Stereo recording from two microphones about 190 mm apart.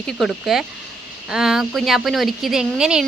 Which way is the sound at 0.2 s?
Centre (ahead or behind).